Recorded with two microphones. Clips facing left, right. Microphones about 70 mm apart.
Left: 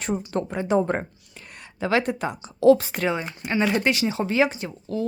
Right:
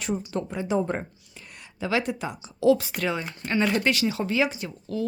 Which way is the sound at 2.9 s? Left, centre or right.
Left.